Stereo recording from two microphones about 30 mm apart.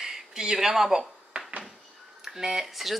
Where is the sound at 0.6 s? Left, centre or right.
Centre.